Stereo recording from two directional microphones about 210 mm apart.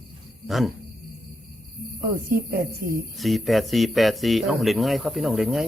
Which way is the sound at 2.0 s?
45° right (ahead or behind).